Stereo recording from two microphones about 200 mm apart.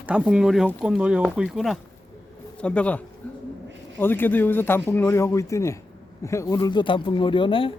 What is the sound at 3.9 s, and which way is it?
Speech, 10° left (ahead or behind).